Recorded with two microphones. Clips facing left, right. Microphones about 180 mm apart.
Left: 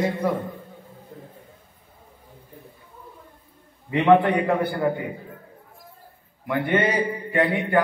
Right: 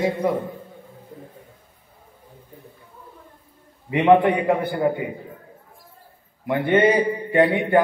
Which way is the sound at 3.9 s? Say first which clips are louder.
Right 2 dB; 20° right (ahead or behind).